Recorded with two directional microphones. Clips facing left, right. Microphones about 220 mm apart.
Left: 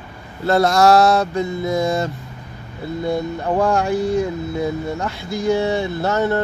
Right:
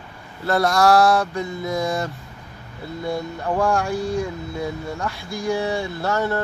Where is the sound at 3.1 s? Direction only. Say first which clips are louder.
Left 3 dB; 20° left (ahead or behind).